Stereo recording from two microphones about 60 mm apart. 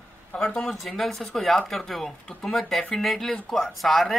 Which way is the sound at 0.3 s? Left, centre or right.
Centre.